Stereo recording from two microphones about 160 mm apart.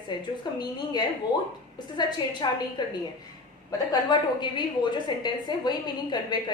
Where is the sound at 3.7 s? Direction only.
30° left (ahead or behind).